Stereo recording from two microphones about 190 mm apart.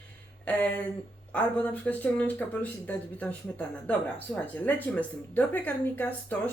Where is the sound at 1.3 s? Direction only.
10° left (ahead or behind).